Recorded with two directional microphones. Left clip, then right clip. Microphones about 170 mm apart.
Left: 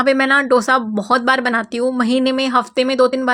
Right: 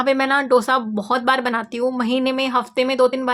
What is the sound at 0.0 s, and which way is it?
Speech, 20° left (ahead or behind).